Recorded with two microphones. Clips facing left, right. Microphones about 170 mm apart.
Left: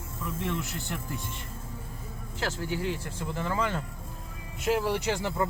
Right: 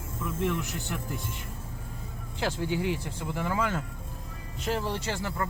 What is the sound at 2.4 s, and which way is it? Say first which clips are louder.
Speech: right 2 dB; 15° right (ahead or behind).